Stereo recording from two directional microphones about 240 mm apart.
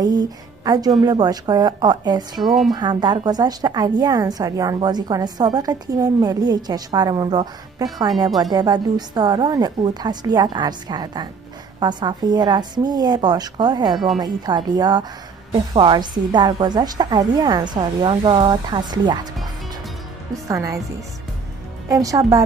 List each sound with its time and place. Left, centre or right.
0.0 s a woman's voice: centre
2.4 s speech: centre
2.7 s a woman's voice: centre
20.4 s a woman's voice: centre
21.8 s a woman's voice: centre